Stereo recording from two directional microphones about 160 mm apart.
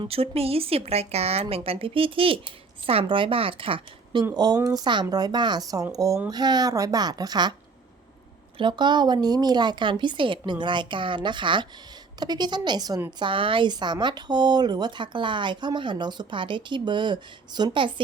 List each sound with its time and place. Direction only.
0.0 s a woman's voice: 35° right (ahead or behind)
8.5 s a woman's voice: 30° right (ahead or behind)